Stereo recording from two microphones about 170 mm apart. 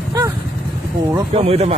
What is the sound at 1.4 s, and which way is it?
Speech, 40° right (ahead or behind).